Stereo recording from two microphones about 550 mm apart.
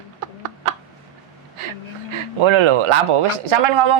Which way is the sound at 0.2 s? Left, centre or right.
Right.